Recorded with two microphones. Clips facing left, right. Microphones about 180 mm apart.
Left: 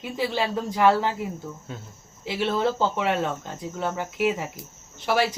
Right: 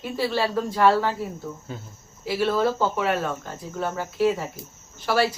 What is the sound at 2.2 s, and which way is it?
Speech, 20° left (ahead or behind).